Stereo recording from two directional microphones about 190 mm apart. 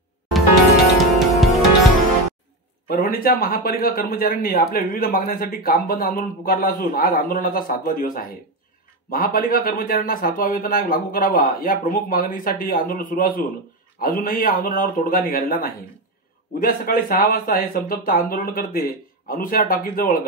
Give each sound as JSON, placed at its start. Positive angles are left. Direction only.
{"t": 1.2, "sound": "music", "side_deg": 0}
{"t": 3.0, "sound": "a man's voice", "side_deg": 50}